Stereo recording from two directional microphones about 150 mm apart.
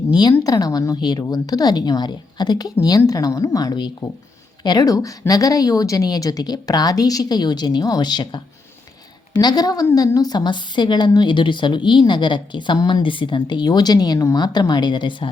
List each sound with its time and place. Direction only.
0.1 s a woman's voice: 30° left (ahead or behind)
9.4 s a woman's voice: 25° left (ahead or behind)